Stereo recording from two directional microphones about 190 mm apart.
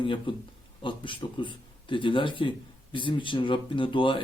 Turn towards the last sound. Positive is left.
turn(degrees=25)  # may be behind; listen again after turning